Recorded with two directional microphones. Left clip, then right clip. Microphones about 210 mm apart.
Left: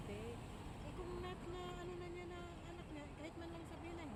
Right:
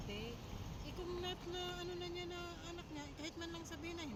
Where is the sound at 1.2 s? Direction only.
40° right (ahead or behind).